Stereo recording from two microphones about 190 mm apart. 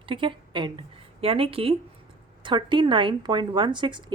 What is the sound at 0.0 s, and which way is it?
A woman's voice, 25° right (ahead or behind).